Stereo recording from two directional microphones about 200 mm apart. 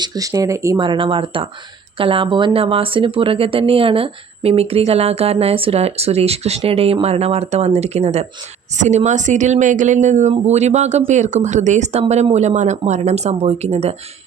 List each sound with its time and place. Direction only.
0.0 s speech: 20° right (ahead or behind)